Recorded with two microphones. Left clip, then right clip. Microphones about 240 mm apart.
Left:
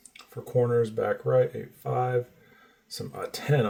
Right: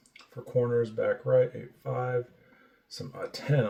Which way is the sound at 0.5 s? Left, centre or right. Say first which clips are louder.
Left 3 dB; left.